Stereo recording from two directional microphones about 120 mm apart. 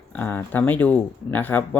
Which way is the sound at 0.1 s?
15° left (ahead or behind).